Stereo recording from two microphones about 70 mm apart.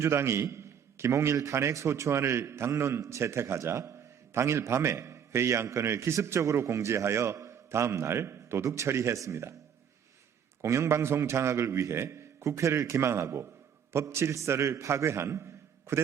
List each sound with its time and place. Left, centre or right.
0.0 s a man's voice: right
10.6 s a man's voice: right